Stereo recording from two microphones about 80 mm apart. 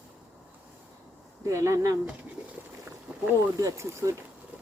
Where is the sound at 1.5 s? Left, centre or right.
Right.